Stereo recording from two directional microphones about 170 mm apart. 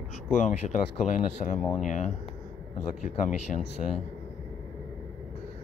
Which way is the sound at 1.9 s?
45° left (ahead or behind).